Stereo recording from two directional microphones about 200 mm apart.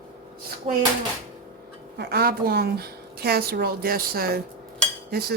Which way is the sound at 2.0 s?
50° right (ahead or behind).